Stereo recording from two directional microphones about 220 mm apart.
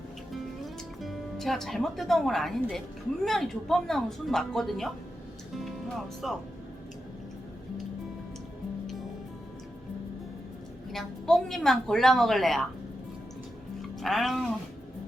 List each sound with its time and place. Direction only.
0.6 s a woman's voice: centre (ahead or behind)
6.2 s a woman's voice: centre (ahead or behind)
10.9 s a woman's voice: centre (ahead or behind)
14.0 s a woman's voice: centre (ahead or behind)